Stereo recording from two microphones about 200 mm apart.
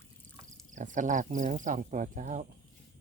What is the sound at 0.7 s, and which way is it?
Speech, 40° right (ahead or behind).